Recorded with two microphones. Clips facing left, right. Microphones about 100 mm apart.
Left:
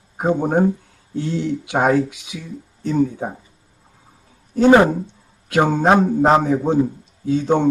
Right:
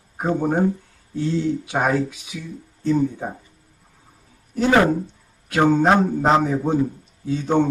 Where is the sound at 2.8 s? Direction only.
20° left (ahead or behind).